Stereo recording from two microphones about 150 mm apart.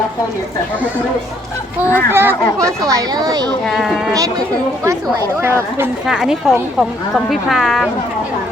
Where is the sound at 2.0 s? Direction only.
15° right (ahead or behind).